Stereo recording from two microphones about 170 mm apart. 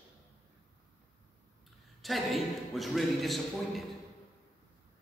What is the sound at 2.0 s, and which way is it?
A man's voice, centre (ahead or behind).